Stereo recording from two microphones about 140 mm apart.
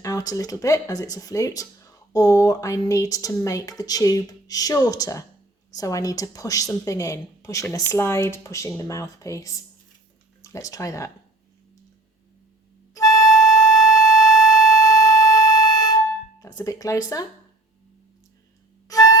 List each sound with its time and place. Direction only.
0.0 s speech: 25° left (ahead or behind)
12.9 s music: 25° left (ahead or behind)
16.4 s speech: 25° left (ahead or behind)
18.9 s music: 25° left (ahead or behind)